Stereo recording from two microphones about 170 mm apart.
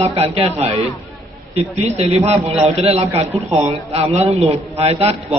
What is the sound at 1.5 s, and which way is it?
A man's voice, 35° right (ahead or behind).